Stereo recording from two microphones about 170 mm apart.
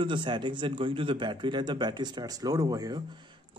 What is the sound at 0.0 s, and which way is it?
Speech, 30° right (ahead or behind).